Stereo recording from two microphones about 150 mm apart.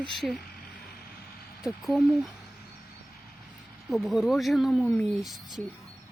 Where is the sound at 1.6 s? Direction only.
Centre (ahead or behind).